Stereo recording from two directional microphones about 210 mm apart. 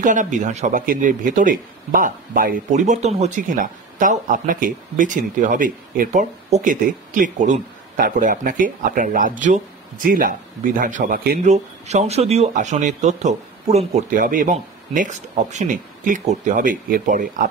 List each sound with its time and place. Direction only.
0.0 s a man's voice: 35° right (ahead or behind)